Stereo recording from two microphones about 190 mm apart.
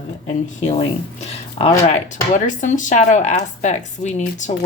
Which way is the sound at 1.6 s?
30° left (ahead or behind).